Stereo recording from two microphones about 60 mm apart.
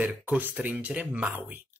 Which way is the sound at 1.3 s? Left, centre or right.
Right.